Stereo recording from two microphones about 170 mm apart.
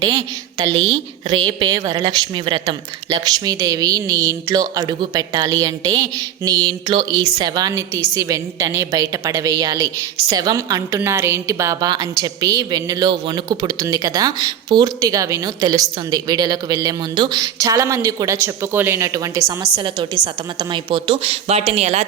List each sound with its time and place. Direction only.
0.0 s a woman's voice: 20° right (ahead or behind); by 22.0 s 40° right (ahead or behind)